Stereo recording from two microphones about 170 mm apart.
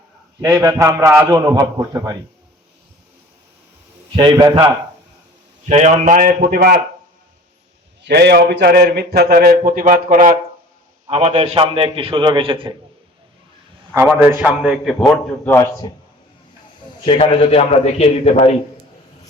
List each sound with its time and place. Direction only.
0.4 s a man's voice: 15° right (ahead or behind)
4.1 s a man's voice: 25° right (ahead or behind)
5.6 s a man's voice: 40° right (ahead or behind); by 6.7 s 60° right (ahead or behind)
8.0 s a man's voice: 80° right; by 10.3 s 50° right (ahead or behind)
11.1 s a man's voice: 40° right (ahead or behind)
13.9 s a man's voice: 15° right (ahead or behind)
15.4 s speech: 15° left (ahead or behind)
17.1 s a man's voice: 35° left (ahead or behind)